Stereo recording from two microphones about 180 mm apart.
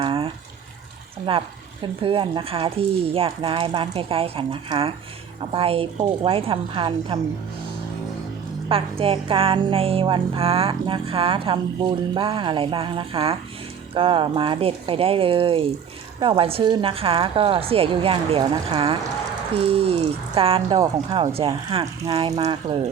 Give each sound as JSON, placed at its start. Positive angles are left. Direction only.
{"t": 0.0, "sound": "water", "side_deg": -30}
{"t": 1.3, "sound": "a woman's voice", "side_deg": -30}
{"t": 8.7, "sound": "a woman's voice", "side_deg": -30}